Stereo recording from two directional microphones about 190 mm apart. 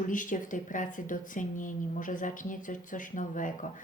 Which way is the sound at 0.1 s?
45° left (ahead or behind).